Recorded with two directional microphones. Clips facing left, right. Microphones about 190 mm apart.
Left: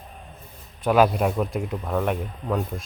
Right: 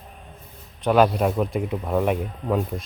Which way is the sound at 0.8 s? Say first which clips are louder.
Right 1 dB; 5° left (ahead or behind).